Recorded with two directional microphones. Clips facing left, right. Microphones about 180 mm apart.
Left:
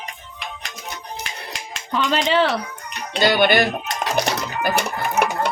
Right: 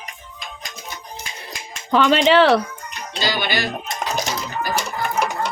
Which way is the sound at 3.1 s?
60° left (ahead or behind).